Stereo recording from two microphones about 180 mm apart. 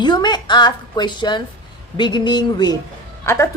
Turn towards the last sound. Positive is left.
turn(degrees=15)  # may be behind; listen again after turning